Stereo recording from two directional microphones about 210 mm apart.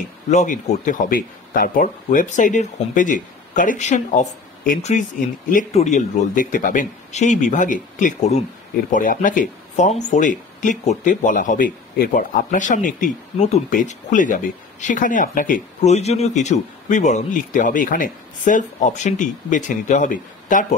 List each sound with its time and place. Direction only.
0.3 s speech: 35° left (ahead or behind)